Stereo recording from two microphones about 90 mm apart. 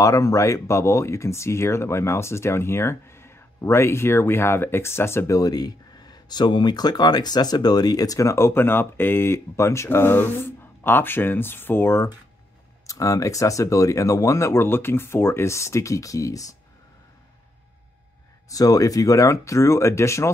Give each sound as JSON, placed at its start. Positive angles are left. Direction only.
{"t": 0.0, "sound": "speech", "side_deg": 35}
{"t": 12.8, "sound": "speech", "side_deg": 40}
{"t": 18.5, "sound": "speech", "side_deg": 40}